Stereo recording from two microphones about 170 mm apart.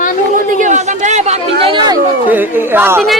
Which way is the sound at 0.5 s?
45° right (ahead or behind).